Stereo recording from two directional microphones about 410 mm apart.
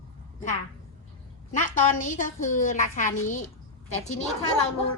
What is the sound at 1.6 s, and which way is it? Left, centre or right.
A woman's voice, centre.